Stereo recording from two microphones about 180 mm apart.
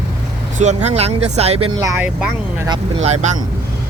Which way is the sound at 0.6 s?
40° right (ahead or behind).